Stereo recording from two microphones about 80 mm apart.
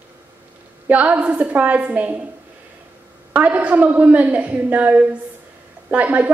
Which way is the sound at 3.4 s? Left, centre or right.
Centre.